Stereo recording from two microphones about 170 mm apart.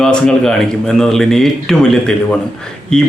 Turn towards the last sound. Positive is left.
turn(degrees=5)  # may be behind; listen again after turning